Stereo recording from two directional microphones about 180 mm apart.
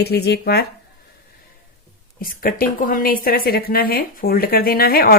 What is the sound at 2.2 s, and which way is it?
Speech, 55° left (ahead or behind).